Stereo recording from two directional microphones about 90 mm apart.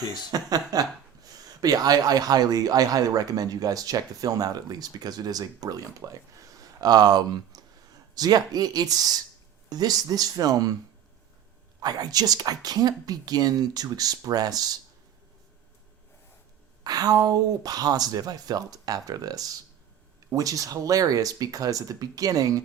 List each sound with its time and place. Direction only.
0.3 s speech: 45° right (ahead or behind)
11.8 s speech: 50° right (ahead or behind)
16.8 s speech: 45° right (ahead or behind)